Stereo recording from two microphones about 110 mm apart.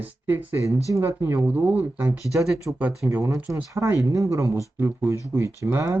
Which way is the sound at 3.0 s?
25° right (ahead or behind).